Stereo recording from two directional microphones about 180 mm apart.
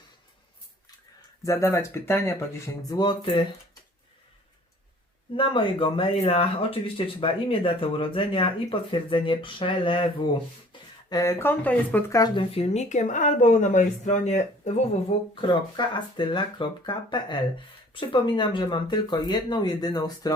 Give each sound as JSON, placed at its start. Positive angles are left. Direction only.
{"t": 1.5, "sound": "speech", "side_deg": 15}
{"t": 2.9, "sound": "speech", "side_deg": 25}
{"t": 5.3, "sound": "speech", "side_deg": 30}
{"t": 15.4, "sound": "speech", "side_deg": 25}